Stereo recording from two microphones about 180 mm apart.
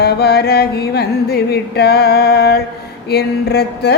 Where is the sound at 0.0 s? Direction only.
65° left (ahead or behind).